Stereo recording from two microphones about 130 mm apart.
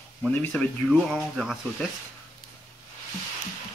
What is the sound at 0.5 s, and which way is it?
Speech, centre (ahead or behind).